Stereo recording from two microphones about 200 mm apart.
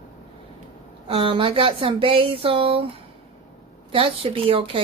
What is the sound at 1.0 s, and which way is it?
Speech, 25° right (ahead or behind).